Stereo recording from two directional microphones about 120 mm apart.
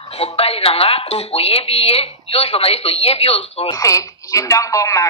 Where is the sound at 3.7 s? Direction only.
25° left (ahead or behind).